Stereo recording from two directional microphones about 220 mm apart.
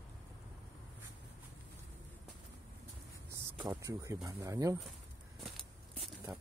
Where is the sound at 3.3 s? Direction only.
15° right (ahead or behind).